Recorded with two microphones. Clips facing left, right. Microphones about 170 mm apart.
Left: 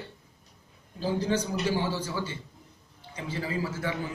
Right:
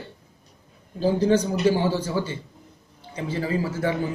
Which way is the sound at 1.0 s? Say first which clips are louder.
Right 8 dB; 50° right (ahead or behind).